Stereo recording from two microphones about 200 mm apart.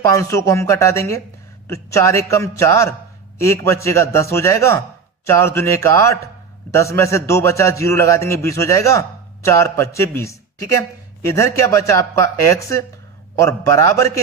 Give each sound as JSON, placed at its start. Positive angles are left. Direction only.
{"t": 0.1, "sound": "a man's voice", "side_deg": 15}